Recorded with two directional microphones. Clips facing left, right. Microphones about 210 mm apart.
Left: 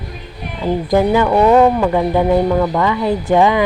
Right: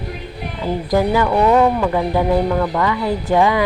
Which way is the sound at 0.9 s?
25° left (ahead or behind).